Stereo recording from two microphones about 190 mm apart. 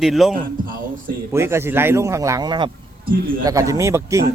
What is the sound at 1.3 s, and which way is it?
Speech, 15° right (ahead or behind).